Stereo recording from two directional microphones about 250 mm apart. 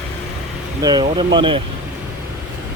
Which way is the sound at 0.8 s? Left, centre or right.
Centre.